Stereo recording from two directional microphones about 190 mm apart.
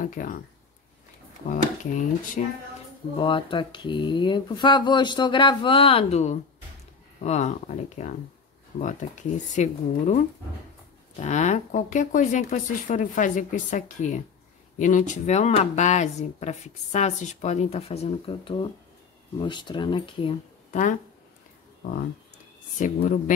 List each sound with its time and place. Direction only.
0.0 s speech: 45° left (ahead or behind)
1.5 s speech: 40° left (ahead or behind)
3.2 s speech: 25° left (ahead or behind)
23.0 s speech: 40° left (ahead or behind)